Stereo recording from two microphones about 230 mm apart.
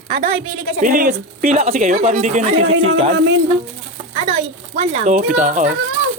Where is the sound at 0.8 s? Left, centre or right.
Right.